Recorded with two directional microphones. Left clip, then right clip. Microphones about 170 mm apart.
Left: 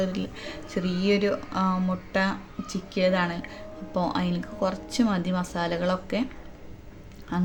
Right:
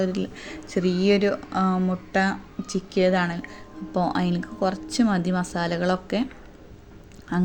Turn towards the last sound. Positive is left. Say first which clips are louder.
# right 3 dB
turn(degrees=-25)  # may be behind; listen again after turning